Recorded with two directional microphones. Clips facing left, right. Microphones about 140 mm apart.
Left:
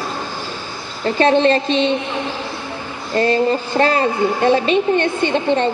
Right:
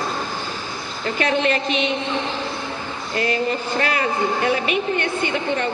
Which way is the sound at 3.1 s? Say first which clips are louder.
Left 7 dB; 35° left (ahead or behind).